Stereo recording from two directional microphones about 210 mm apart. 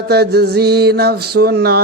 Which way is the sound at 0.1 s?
50° right (ahead or behind).